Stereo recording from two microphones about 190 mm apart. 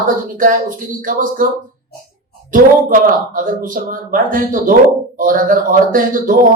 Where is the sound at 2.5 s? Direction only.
45° right (ahead or behind).